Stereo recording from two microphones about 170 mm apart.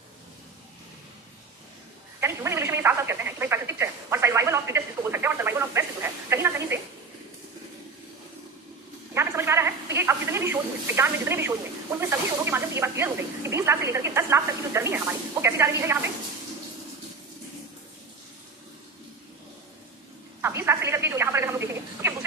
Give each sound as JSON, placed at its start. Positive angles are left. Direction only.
{"t": 2.2, "sound": "telephone", "side_deg": -15}
{"t": 9.1, "sound": "a woman's voice", "side_deg": -15}
{"t": 20.4, "sound": "telephone", "side_deg": -15}